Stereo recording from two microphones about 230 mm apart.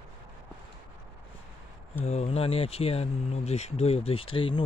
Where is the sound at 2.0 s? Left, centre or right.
Left.